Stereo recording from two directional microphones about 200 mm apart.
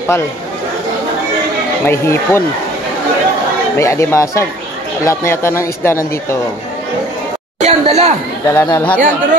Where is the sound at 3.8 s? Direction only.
15° left (ahead or behind).